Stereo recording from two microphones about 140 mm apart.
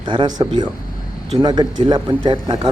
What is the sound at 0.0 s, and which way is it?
Speech, 35° right (ahead or behind).